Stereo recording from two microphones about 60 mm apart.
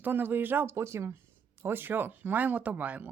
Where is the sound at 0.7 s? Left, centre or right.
Right.